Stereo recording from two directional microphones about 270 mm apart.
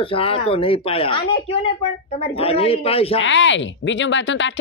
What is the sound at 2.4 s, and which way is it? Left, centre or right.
Speech, left.